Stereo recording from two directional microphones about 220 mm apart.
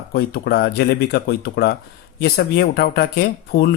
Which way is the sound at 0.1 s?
45° left (ahead or behind).